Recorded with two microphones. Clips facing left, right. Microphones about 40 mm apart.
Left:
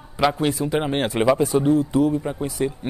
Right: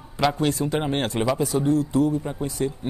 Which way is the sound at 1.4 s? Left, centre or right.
Left.